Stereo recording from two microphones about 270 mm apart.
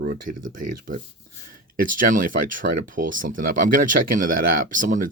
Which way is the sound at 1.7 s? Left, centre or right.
Right.